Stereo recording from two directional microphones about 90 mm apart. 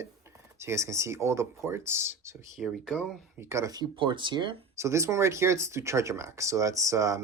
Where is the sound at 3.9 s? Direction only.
60° right (ahead or behind).